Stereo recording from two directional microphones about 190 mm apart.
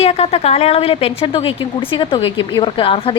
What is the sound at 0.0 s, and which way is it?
A woman's voice, 35° left (ahead or behind).